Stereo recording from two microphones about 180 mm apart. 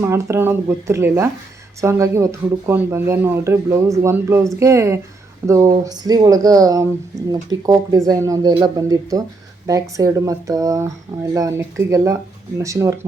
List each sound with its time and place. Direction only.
0.0 s speech: 15° right (ahead or behind)